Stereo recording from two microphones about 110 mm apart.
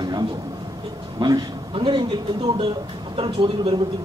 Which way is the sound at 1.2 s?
45° right (ahead or behind).